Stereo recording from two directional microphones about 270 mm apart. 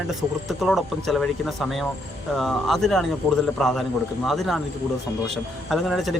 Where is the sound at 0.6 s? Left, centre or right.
Centre.